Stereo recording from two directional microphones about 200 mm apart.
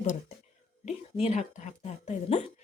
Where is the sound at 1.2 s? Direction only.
35° left (ahead or behind).